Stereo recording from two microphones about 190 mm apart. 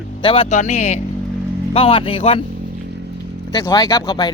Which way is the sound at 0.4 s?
35° left (ahead or behind).